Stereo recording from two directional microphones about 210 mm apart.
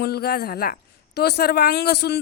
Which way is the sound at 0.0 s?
50° left (ahead or behind).